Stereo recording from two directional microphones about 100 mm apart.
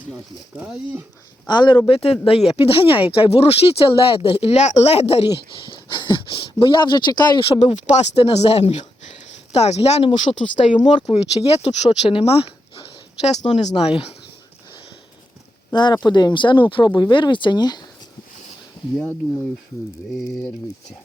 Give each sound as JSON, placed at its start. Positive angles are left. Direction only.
{"t": 0.5, "sound": "speech", "side_deg": -15}
{"t": 1.5, "sound": "speech", "side_deg": 50}
{"t": 1.9, "sound": "speech", "side_deg": 75}
{"t": 5.6, "sound": "speech", "side_deg": 50}
{"t": 7.4, "sound": "speech", "side_deg": 80}
{"t": 10.3, "sound": "speech", "side_deg": 35}
{"t": 11.1, "sound": "speech", "side_deg": 85}
{"t": 15.7, "sound": "speech", "side_deg": 50}